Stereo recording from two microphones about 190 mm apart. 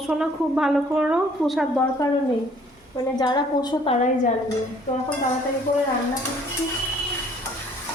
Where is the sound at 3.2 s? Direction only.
20° left (ahead or behind).